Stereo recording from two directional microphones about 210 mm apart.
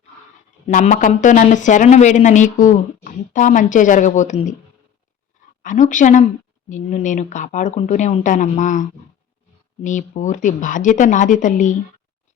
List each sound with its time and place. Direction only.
0.7 s speech: 35° left (ahead or behind)
5.6 s speech: 35° left (ahead or behind)